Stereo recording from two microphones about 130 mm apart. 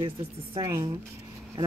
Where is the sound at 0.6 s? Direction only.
30° right (ahead or behind).